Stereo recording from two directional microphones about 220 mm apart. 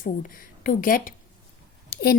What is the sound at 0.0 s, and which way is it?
A woman's voice, 40° left (ahead or behind).